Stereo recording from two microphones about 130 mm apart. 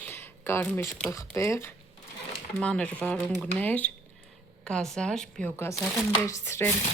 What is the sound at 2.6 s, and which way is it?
A woman's voice, 10° left (ahead or behind).